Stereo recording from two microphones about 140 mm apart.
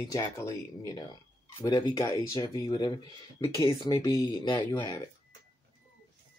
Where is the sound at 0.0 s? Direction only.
20° left (ahead or behind).